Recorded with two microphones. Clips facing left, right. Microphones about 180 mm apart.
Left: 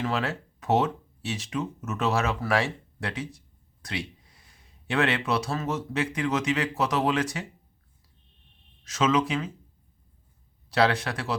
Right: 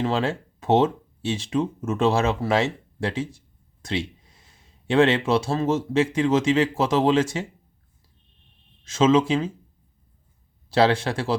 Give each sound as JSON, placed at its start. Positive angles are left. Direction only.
{"t": 0.0, "sound": "speech", "side_deg": -25}
{"t": 8.8, "sound": "speech", "side_deg": -25}
{"t": 10.7, "sound": "speech", "side_deg": -30}